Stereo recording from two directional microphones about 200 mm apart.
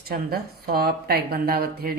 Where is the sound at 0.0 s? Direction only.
50° right (ahead or behind).